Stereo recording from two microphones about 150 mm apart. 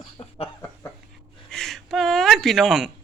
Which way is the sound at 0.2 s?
45° left (ahead or behind).